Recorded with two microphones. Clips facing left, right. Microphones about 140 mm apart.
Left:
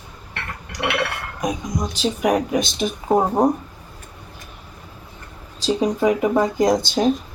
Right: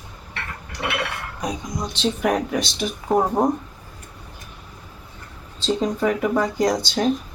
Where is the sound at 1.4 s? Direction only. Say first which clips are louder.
Left 4 dB; 15° left (ahead or behind).